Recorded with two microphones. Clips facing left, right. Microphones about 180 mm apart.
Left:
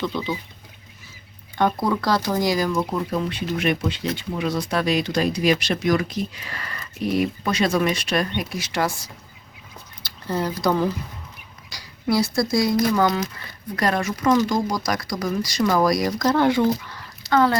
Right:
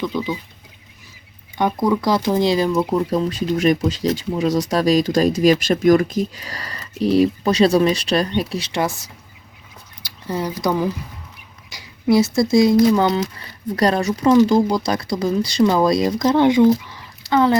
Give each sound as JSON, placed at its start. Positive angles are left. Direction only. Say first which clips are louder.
{"t": 0.0, "sound": "speech", "louder": "right 3 dB", "side_deg": -15}
{"t": 1.8, "sound": "speech", "louder": "right 4 dB", "side_deg": -15}
{"t": 3.1, "sound": "speech", "louder": "right 5 dB", "side_deg": -35}
{"t": 10.0, "sound": "speech", "louder": "right 1 dB", "side_deg": -15}
{"t": 13.7, "sound": "speech", "louder": "right 5 dB", "side_deg": -35}